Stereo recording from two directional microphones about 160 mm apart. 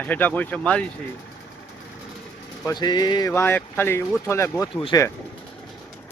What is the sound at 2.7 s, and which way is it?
Speech, 25° left (ahead or behind).